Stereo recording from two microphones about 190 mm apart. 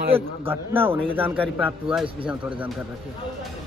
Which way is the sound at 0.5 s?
10° right (ahead or behind).